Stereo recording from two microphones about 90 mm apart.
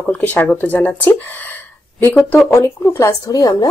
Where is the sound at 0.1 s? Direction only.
15° left (ahead or behind).